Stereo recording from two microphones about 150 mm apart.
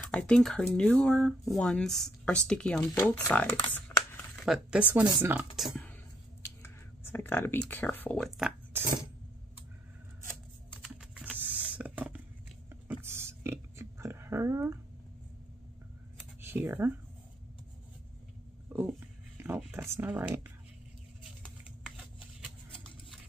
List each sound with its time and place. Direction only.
0.1 s speech: 5° left (ahead or behind)
2.9 s speech: 20° left (ahead or behind)
3.7 s crumpling: 15° left (ahead or behind)
4.5 s speech: 5° right (ahead or behind)
5.6 s speech: centre (ahead or behind)
6.6 s speech: 15° left (ahead or behind)
8.4 s cutlery: 5° right (ahead or behind)
10.8 s typing: 5° right (ahead or behind)
12.8 s burping: 15° right (ahead or behind)
16.3 s speech: 15° right (ahead or behind)
18.7 s a sound: 15° right (ahead or behind)